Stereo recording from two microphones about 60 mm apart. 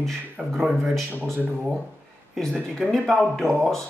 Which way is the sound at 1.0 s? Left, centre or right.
Right.